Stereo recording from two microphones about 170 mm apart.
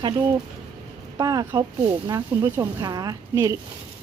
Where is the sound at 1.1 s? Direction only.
20° right (ahead or behind).